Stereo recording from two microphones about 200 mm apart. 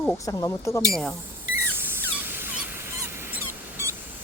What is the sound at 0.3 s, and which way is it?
Speech, 15° left (ahead or behind).